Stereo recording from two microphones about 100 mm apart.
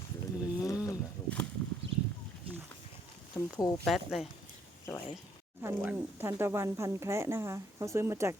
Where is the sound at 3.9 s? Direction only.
Centre (ahead or behind).